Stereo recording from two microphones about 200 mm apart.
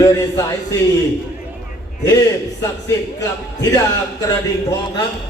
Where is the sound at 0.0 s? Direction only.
15° left (ahead or behind).